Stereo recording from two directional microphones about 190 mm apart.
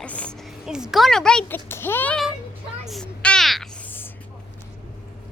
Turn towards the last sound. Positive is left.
turn(degrees=10)  # may be behind; listen again after turning